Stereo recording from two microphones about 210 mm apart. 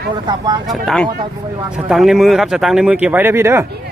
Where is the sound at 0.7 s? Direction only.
Centre (ahead or behind).